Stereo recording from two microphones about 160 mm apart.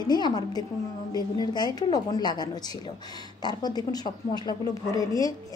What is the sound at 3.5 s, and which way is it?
Speech, 25° left (ahead or behind).